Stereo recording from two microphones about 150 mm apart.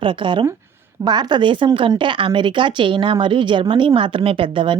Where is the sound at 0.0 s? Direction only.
35° right (ahead or behind).